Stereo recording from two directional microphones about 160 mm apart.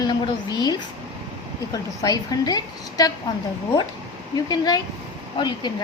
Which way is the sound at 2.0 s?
25° left (ahead or behind).